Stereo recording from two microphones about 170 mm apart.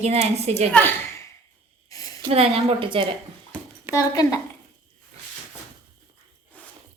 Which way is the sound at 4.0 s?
20° left (ahead or behind).